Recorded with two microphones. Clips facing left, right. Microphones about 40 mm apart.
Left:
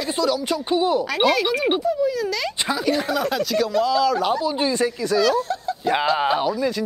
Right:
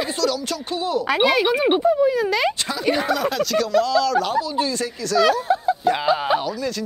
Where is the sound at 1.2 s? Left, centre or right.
Centre.